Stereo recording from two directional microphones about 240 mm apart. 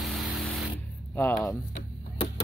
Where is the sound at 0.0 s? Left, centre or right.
Centre.